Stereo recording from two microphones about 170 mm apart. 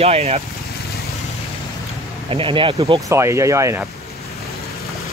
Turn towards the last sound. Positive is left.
turn(degrees=-15)  # may be behind; listen again after turning